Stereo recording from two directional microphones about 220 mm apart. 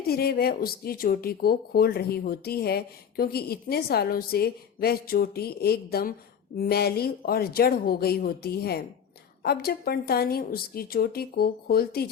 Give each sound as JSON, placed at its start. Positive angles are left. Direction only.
{"t": 0.1, "sound": "speech", "side_deg": 45}